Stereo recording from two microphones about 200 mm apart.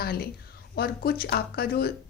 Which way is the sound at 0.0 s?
50° left (ahead or behind).